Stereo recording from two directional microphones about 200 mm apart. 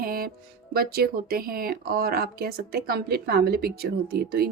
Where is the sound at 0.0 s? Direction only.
45° right (ahead or behind).